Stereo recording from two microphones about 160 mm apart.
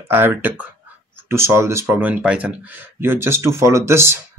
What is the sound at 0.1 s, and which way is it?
Speech, 10° right (ahead or behind).